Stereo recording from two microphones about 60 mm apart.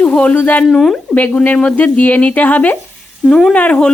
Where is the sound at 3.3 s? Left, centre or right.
Centre.